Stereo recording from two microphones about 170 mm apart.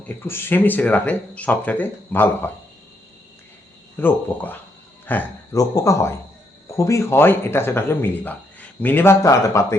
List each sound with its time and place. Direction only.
0.3 s speech: 15° left (ahead or behind)
3.9 s speech: 10° left (ahead or behind)